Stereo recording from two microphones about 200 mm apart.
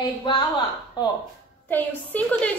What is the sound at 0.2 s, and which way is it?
Speech, 25° left (ahead or behind).